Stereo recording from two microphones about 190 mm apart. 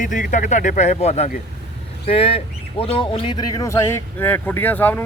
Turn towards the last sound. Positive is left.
turn(degrees=10)  # may be behind; listen again after turning